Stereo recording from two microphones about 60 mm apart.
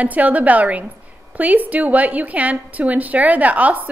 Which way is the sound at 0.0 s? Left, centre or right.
Right.